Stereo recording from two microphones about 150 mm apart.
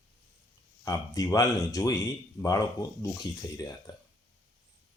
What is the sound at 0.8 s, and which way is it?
Speech, 25° left (ahead or behind).